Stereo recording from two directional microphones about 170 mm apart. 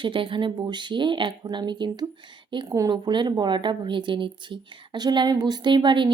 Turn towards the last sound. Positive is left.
turn(degrees=-30)  # may be behind; listen again after turning